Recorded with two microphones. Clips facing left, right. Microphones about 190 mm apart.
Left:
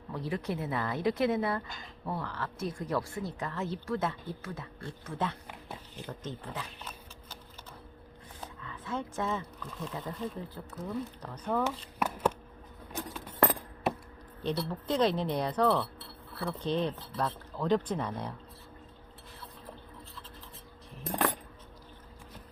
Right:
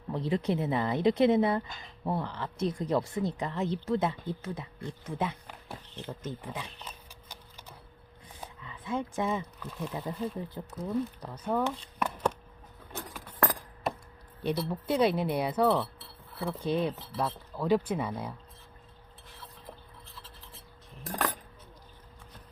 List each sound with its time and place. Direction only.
0.1 s speech: 25° right (ahead or behind)
8.6 s speech: 15° right (ahead or behind)
11.9 s chopping: 5° left (ahead or behind)
14.4 s speech: 10° right (ahead or behind)
21.0 s a sound: 20° left (ahead or behind)